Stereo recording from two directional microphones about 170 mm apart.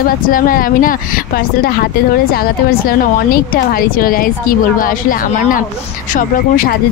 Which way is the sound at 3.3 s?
60° left (ahead or behind).